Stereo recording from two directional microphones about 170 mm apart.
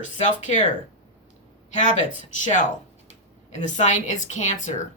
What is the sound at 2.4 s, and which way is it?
Speech, 45° left (ahead or behind).